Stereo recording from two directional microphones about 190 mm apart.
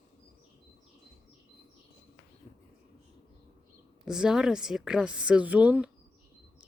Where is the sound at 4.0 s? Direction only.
5° right (ahead or behind).